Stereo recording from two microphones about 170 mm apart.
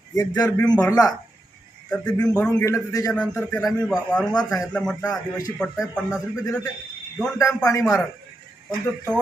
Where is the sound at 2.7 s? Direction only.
20° left (ahead or behind).